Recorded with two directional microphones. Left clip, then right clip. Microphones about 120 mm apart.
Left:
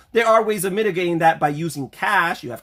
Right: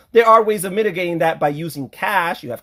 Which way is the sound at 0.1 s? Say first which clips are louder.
Right 4 dB; 45° right (ahead or behind).